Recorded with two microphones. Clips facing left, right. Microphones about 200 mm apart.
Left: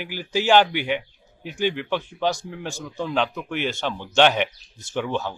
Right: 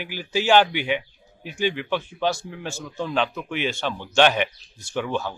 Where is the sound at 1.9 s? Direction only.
15° left (ahead or behind).